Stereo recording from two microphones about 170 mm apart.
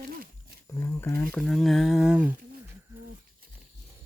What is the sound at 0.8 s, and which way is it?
Speech, 15° left (ahead or behind).